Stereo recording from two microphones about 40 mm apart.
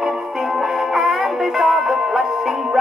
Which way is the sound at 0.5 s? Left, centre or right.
Centre.